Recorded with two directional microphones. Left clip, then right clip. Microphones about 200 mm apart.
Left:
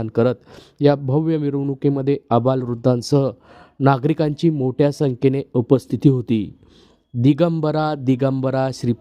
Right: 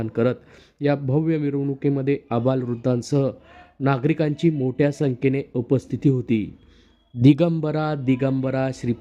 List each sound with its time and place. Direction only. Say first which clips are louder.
0.0 s speech: left 4 dB; 30° left (ahead or behind)
7.2 s speech: left 1 dB; centre (ahead or behind)
7.6 s speech: left 4 dB; 35° left (ahead or behind)